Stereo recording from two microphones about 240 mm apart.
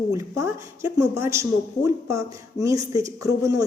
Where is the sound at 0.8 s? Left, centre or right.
Centre.